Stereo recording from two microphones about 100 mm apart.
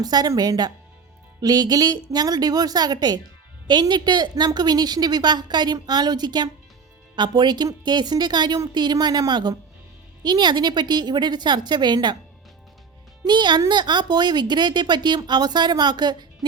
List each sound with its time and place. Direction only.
0.0 s a woman's voice: 40° right (ahead or behind)
13.2 s a woman's voice: 50° right (ahead or behind)